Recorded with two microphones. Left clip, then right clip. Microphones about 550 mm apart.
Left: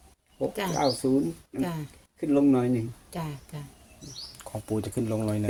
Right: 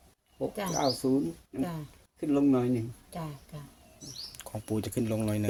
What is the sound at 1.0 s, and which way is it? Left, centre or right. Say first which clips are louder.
Speech: left 2 dB; right.